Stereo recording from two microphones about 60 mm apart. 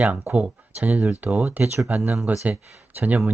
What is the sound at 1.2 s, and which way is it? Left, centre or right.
Speech, right.